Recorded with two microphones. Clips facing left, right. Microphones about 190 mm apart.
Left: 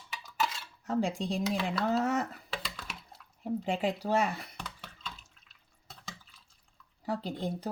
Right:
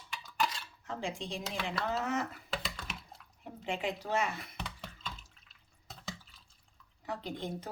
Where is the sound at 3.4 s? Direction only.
40° left (ahead or behind).